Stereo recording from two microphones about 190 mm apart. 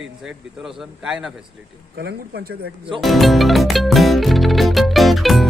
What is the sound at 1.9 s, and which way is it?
Speech, 55° right (ahead or behind).